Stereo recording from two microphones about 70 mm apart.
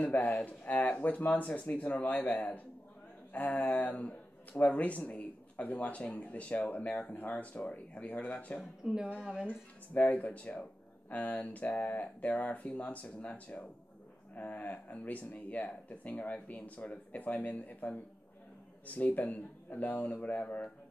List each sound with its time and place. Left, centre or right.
0.0 s speech: left
8.8 s speech: centre
9.5 s speech: left